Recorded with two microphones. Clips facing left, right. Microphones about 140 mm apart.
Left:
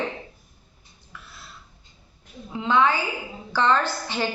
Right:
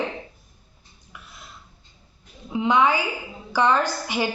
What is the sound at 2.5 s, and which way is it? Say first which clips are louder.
A woman's voice: right 1 dB; 15° right (ahead or behind).